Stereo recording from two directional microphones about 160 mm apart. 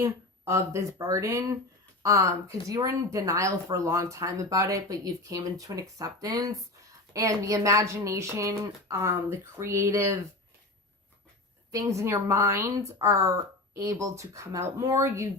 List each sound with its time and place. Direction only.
0.0 s a woman's voice: 15° right (ahead or behind)
11.7 s a woman's voice: 20° right (ahead or behind)